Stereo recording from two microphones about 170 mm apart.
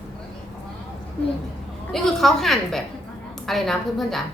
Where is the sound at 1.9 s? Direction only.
Centre (ahead or behind).